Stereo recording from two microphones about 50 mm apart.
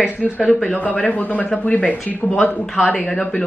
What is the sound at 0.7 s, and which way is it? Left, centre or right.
Speech, left.